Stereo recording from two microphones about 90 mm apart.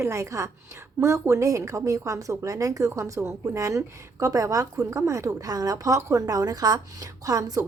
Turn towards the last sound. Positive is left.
turn(degrees=-40)  # may be behind; listen again after turning